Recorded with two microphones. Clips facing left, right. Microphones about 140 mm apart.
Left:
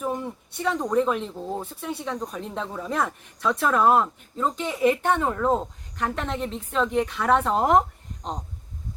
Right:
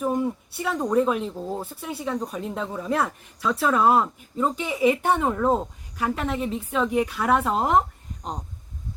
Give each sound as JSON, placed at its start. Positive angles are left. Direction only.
{"t": 0.0, "sound": "speech", "side_deg": -5}